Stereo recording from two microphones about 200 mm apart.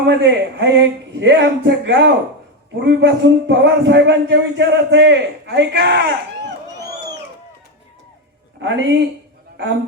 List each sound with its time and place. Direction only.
0.0 s speech: 60° right (ahead or behind)
8.6 s speech: 60° right (ahead or behind)